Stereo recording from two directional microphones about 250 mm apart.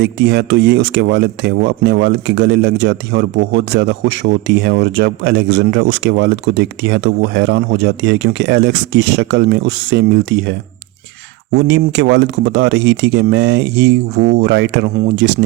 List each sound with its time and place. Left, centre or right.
0.0 s a man's voice: right